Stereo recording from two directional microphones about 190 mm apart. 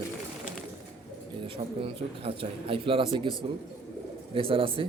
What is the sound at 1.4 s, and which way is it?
Speech, 30° right (ahead or behind).